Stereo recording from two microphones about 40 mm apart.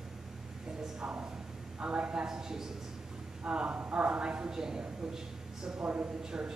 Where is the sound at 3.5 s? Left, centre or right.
Right.